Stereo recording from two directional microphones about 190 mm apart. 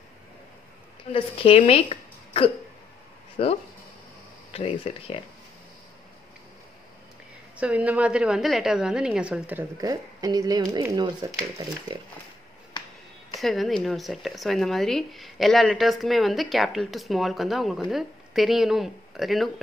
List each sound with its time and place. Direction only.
1.1 s a woman's voice: 30° left (ahead or behind)
7.5 s a woman's voice: 5° right (ahead or behind)
12.7 s music: 25° left (ahead or behind)
13.4 s speech: centre (ahead or behind)